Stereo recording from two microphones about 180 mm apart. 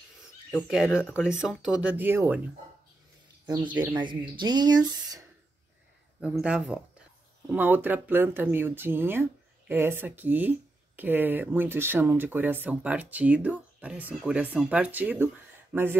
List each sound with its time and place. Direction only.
0.5 s speech: centre (ahead or behind)
3.4 s speech: 25° right (ahead or behind)
6.2 s speech: 5° right (ahead or behind)